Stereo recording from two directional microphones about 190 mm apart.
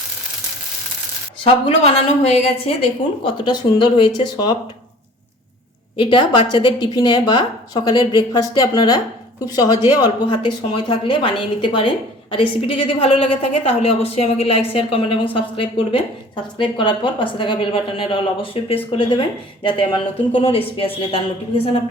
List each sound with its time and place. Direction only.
1.5 s a woman's voice: 30° left (ahead or behind)
6.0 s a woman's voice: 25° left (ahead or behind)